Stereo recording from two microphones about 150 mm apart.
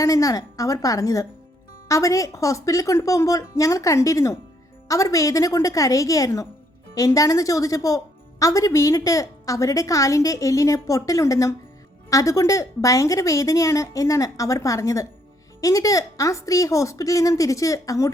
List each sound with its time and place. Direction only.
0.0 s a woman's voice: 25° left (ahead or behind)